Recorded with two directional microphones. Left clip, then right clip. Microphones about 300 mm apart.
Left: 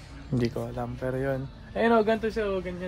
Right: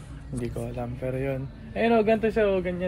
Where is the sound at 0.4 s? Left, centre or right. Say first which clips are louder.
Left 2 dB; left.